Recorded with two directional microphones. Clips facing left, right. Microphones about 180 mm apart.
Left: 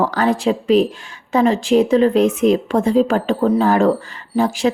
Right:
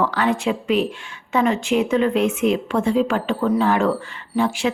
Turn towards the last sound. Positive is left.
turn(degrees=40)  # may be behind; listen again after turning